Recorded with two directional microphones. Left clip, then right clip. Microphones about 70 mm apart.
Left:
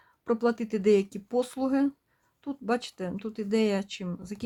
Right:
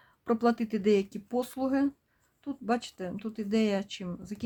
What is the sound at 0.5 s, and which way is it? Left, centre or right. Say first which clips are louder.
Speech: left 3 dB; left.